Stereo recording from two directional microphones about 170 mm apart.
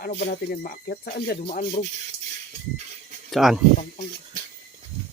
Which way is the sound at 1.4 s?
50° left (ahead or behind).